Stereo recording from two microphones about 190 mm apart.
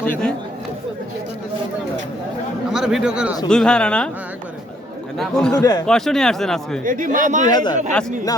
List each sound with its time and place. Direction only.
0.0 s speech: 5° left (ahead or behind)
2.7 s a man's voice: centre (ahead or behind)
5.1 s speech: 5° left (ahead or behind)
5.5 s speech: 20° left (ahead or behind)
5.8 s speech: 5° left (ahead or behind)
6.8 s speech: 45° right (ahead or behind)
7.5 s speech: 25° left (ahead or behind)